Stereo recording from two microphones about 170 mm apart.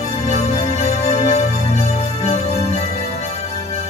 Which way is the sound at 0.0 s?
40° left (ahead or behind).